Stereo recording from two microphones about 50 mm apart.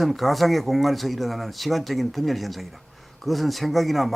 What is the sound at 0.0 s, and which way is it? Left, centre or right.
Speech, centre.